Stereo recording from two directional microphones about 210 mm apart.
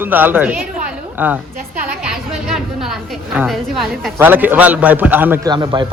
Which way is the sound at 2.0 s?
5° right (ahead or behind).